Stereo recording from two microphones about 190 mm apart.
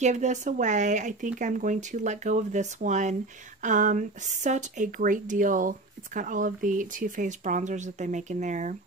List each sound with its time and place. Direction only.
0.0 s speech: 40° right (ahead or behind)